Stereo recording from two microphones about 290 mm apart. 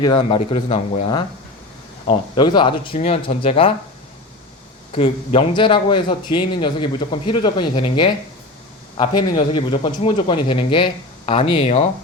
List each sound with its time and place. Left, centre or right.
0.0 s a man's voice: centre
4.9 s a man's voice: left